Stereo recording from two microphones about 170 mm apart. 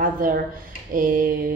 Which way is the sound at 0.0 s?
55° right (ahead or behind).